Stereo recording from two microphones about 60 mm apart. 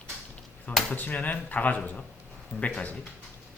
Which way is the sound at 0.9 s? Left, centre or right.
Left.